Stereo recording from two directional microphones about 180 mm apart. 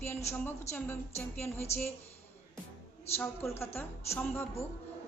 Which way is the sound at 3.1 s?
35° left (ahead or behind).